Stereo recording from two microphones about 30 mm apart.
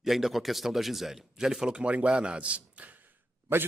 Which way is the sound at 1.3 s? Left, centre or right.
Centre.